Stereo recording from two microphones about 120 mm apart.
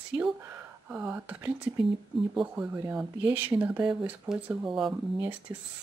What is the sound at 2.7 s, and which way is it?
Speech, 20° right (ahead or behind).